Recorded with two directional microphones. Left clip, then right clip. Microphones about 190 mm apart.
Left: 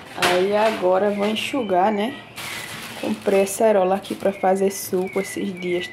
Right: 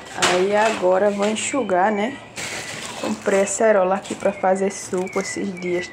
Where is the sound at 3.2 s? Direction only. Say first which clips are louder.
Even; 15° left (ahead or behind).